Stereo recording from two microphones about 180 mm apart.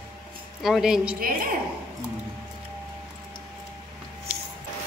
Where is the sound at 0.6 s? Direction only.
Centre (ahead or behind).